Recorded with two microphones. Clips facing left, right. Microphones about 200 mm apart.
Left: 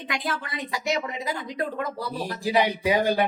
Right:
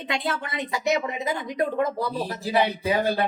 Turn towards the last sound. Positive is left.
turn(degrees=15)  # may be behind; listen again after turning